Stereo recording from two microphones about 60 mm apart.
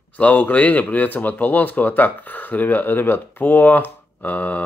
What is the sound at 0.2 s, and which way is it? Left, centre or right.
Speech, left.